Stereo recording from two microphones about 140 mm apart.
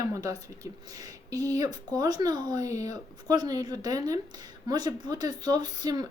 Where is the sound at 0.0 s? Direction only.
25° right (ahead or behind).